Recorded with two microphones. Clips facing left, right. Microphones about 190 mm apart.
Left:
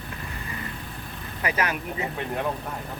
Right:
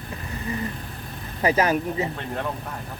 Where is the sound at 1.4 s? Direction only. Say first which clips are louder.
Right 7 dB; 35° right (ahead or behind).